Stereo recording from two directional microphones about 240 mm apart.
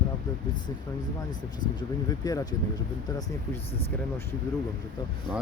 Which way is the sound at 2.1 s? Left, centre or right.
Centre.